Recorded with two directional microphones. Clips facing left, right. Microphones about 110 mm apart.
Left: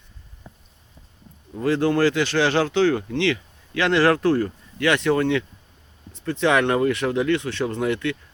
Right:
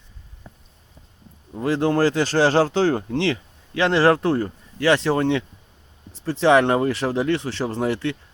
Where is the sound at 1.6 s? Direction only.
25° right (ahead or behind).